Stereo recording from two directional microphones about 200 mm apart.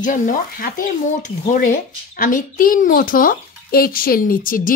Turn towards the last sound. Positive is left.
turn(degrees=45)  # may be behind; listen again after turning